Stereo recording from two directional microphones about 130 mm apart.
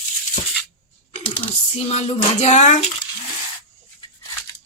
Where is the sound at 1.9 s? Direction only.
55° left (ahead or behind).